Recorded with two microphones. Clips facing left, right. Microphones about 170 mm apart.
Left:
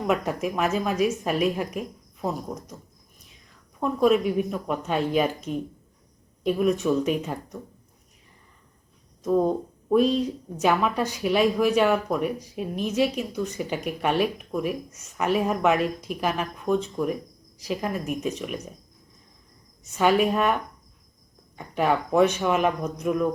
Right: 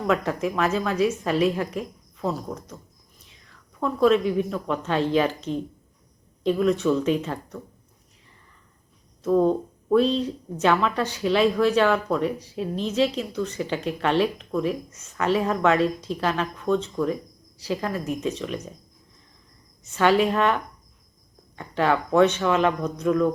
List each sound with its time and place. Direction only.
0.4 s speech: 15° left (ahead or behind)
3.8 s speech: 15° left (ahead or behind)
9.2 s speech: 10° left (ahead or behind)
19.9 s speech: 10° left (ahead or behind)